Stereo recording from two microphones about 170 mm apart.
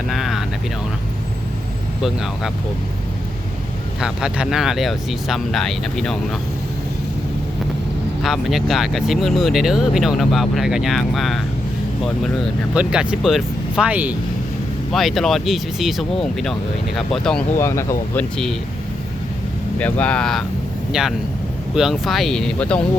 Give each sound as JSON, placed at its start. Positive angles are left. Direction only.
{"t": 0.1, "sound": "speech", "side_deg": 0}
{"t": 4.0, "sound": "speech", "side_deg": -5}
{"t": 8.2, "sound": "speech", "side_deg": 0}
{"t": 12.7, "sound": "speech", "side_deg": -5}
{"t": 17.6, "sound": "speech", "side_deg": 15}
{"t": 19.8, "sound": "speech", "side_deg": 10}